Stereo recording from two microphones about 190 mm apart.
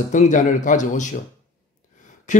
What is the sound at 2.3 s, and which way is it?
Speech, 40° left (ahead or behind).